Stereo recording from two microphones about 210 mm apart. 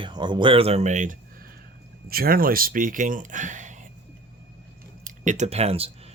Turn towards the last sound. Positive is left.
turn(degrees=-30)  # may be behind; listen again after turning